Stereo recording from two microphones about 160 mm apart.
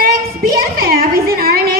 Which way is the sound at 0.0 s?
65° right (ahead or behind).